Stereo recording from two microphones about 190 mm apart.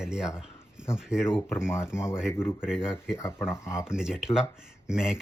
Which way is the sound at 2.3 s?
10° left (ahead or behind).